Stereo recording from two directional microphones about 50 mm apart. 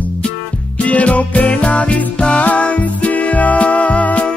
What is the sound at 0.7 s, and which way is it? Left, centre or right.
Music, left.